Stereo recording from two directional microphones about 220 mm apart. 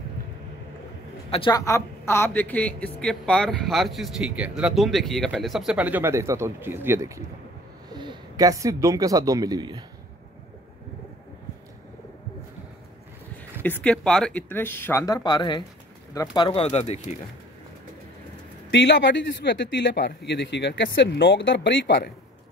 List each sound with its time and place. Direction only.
1.3 s speech: 20° left (ahead or behind); by 9.8 s 20° right (ahead or behind)
13.6 s speech: 10° left (ahead or behind); by 17.2 s 30° left (ahead or behind)
18.7 s speech: 55° left (ahead or behind)